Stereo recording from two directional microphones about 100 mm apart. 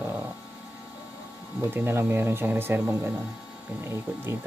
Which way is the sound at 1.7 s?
20° right (ahead or behind).